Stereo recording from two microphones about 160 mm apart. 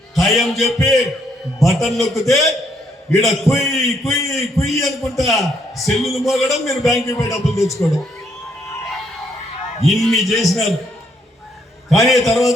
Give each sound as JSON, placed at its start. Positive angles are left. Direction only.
{"t": 0.2, "sound": "a man's voice", "side_deg": 0}
{"t": 7.1, "sound": "speech", "side_deg": 20}
{"t": 7.6, "sound": "a man's voice", "side_deg": 0}
{"t": 9.9, "sound": "a man's voice", "side_deg": 0}
{"t": 11.9, "sound": "a man's voice", "side_deg": 0}